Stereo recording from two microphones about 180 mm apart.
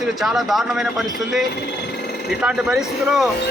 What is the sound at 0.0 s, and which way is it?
Speech, centre (ahead or behind).